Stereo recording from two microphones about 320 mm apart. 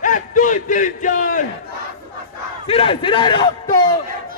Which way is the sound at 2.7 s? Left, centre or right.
Centre.